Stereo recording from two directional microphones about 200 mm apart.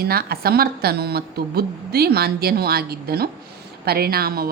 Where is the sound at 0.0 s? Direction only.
50° right (ahead or behind).